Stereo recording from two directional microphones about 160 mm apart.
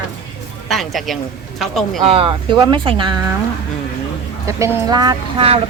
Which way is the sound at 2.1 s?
35° right (ahead or behind).